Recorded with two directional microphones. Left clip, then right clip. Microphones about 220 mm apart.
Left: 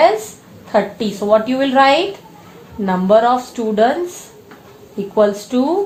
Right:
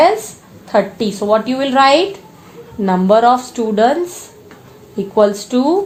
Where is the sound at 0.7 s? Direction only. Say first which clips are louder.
Right 2 dB; 40° right (ahead or behind).